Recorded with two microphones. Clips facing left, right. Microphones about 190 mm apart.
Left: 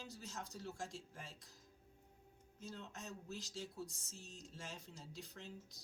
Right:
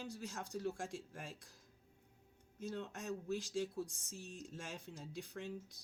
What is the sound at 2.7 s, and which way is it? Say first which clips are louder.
Speech: right 8 dB; 55° right (ahead or behind).